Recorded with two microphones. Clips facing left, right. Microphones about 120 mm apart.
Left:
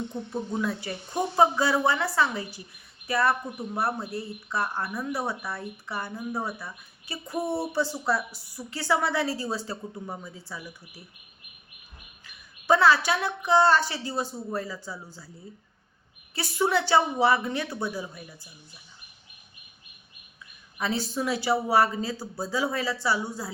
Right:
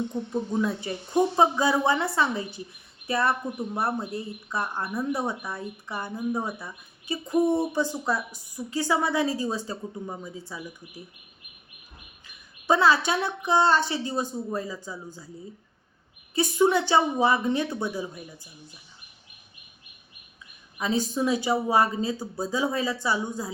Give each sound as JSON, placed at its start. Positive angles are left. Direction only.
{"t": 0.6, "sound": "a woman's voice", "side_deg": -20}
{"t": 12.6, "sound": "a woman's voice", "side_deg": -20}
{"t": 16.3, "sound": "speech", "side_deg": -20}
{"t": 20.7, "sound": "speech", "side_deg": -15}